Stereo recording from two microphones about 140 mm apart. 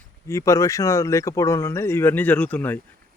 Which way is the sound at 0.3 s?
20° left (ahead or behind).